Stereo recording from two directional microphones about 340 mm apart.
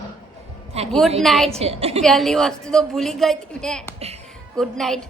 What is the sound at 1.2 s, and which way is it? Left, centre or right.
Speech, centre.